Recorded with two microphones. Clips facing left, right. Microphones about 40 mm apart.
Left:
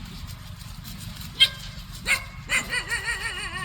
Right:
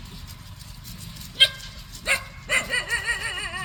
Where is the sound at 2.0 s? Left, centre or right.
Centre.